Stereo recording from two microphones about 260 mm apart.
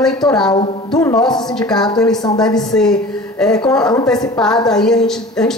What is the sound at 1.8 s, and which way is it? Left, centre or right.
Speech, centre.